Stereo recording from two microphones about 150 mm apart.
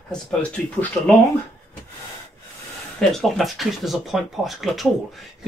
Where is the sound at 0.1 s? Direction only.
5° left (ahead or behind).